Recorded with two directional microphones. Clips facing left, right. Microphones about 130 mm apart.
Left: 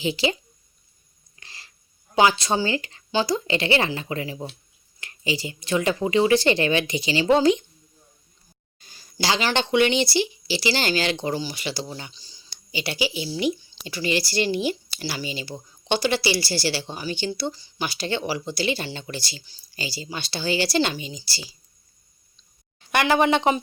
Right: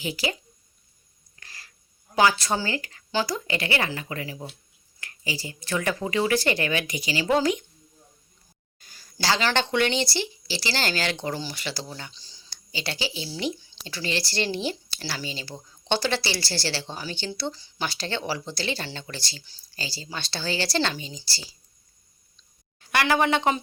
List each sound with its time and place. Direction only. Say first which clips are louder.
0.0 s speech: left 5 dB; 25° left (ahead or behind)
1.4 s a sound: left 1 dB; 25° left (ahead or behind)
2.1 s speech: left 2 dB; 20° left (ahead or behind)
8.8 s a sound: left 1 dB; 25° left (ahead or behind)
9.1 s speech: left 1 dB; 15° left (ahead or behind)
22.8 s a woman's voice: left 3 dB; 20° left (ahead or behind)